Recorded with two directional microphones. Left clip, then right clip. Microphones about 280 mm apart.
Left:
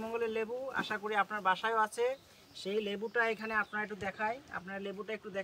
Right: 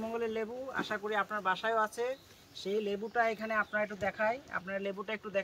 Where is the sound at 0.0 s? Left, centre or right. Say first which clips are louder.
Even; centre.